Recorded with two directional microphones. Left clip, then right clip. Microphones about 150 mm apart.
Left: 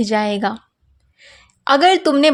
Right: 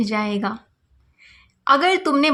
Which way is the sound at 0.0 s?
30° left (ahead or behind).